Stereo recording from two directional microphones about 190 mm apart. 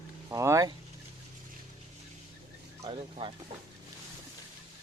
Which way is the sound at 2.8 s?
30° right (ahead or behind).